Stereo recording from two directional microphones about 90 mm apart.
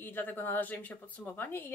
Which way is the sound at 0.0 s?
20° left (ahead or behind).